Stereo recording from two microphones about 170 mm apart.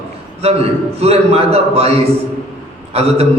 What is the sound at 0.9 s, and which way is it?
Speech, 35° right (ahead or behind).